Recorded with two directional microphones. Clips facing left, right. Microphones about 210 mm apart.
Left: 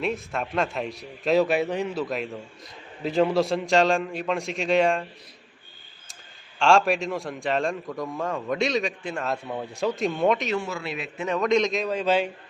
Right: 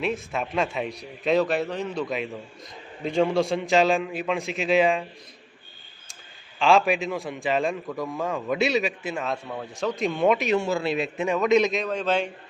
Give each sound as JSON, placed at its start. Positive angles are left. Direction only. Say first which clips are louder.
{"t": 0.0, "sound": "a man's voice", "louder": "even", "side_deg": 0}
{"t": 2.0, "sound": "a man's voice", "louder": "even", "side_deg": 0}
{"t": 6.6, "sound": "a man's voice", "louder": "even", "side_deg": 0}
{"t": 9.5, "sound": "speech", "louder": "left 2 dB", "side_deg": 10}
{"t": 9.9, "sound": "a man's voice", "louder": "right 2 dB", "side_deg": 0}
{"t": 10.5, "sound": "a man's voice", "louder": "right 5 dB", "side_deg": -30}
{"t": 11.3, "sound": "a man's voice", "louder": "right 1 dB", "side_deg": -5}